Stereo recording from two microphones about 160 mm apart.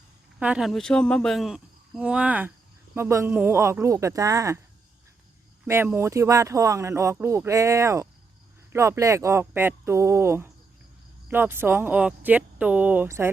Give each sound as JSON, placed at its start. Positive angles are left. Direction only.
{"t": 0.3, "sound": "speech", "side_deg": -5}
{"t": 5.6, "sound": "speech", "side_deg": -15}